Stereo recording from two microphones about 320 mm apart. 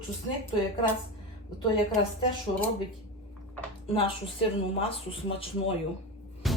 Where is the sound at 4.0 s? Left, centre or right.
Centre.